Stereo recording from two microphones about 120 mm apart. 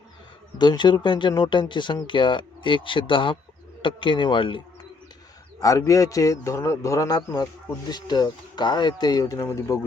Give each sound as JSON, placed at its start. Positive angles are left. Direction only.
{"t": 0.6, "sound": "speech", "side_deg": 40}
{"t": 5.5, "sound": "speech", "side_deg": 30}